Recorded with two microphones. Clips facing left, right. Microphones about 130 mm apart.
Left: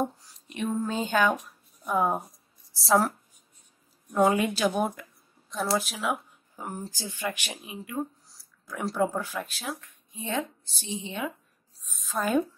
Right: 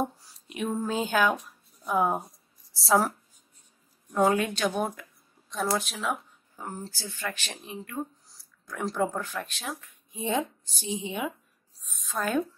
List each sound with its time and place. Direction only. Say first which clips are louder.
0.0 s a woman's voice: left 1 dB; 5° right (ahead or behind)
4.1 s speech: left 1 dB; centre (ahead or behind)
10.1 s a woman's voice: right 3 dB; 15° right (ahead or behind)
11.8 s a sound: left 1 dB; centre (ahead or behind)